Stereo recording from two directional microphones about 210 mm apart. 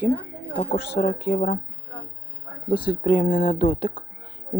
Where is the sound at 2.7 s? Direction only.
25° left (ahead or behind).